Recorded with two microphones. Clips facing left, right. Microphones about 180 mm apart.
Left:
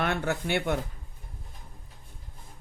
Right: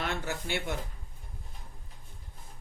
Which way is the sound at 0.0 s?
60° left (ahead or behind).